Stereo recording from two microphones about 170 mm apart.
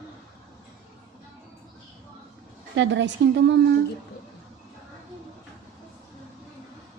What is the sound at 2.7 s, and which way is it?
Speech, 90° right.